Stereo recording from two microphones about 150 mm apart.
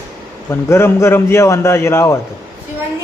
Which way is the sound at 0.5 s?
15° left (ahead or behind).